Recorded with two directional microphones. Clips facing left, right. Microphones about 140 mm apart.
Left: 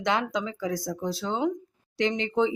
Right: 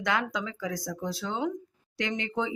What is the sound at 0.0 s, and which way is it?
Speech, 25° left (ahead or behind).